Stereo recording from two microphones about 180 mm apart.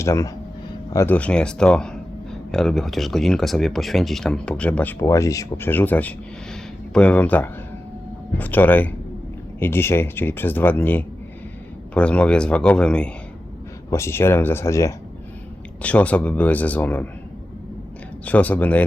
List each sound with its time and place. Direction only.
0.0 s speech: 15° left (ahead or behind)
18.3 s speech: 10° left (ahead or behind)